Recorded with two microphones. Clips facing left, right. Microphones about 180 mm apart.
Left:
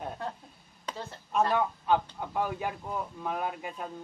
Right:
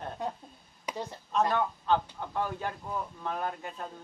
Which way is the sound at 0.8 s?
15° right (ahead or behind).